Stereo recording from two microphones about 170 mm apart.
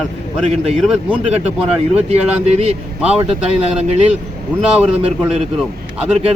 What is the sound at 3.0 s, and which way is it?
Speech, 5° right (ahead or behind).